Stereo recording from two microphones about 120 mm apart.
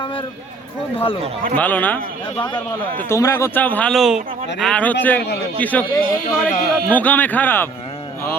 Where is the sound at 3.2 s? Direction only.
25° left (ahead or behind).